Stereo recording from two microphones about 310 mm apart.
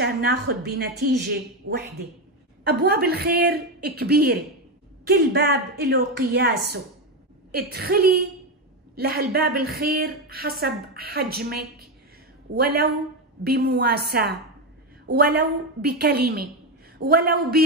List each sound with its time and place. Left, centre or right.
0.0 s speech: right
7.5 s a woman's voice: right
12.5 s a woman's voice: right